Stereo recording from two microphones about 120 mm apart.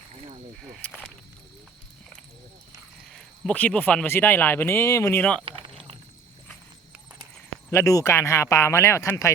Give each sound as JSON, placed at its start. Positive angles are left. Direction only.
{"t": 3.1, "sound": "speech", "side_deg": 5}
{"t": 5.2, "sound": "speech", "side_deg": 10}
{"t": 5.5, "sound": "a sound", "side_deg": -45}
{"t": 7.7, "sound": "speech", "side_deg": 25}